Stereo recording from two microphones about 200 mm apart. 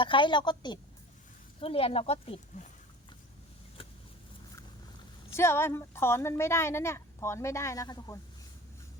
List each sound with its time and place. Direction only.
0.0 s speech: 25° left (ahead or behind)
5.3 s a woman's voice: 10° left (ahead or behind)